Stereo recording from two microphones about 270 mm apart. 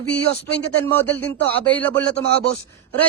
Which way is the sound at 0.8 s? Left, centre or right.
Centre.